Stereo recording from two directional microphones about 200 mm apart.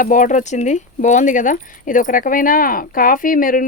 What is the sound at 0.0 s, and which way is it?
Speech, 40° left (ahead or behind).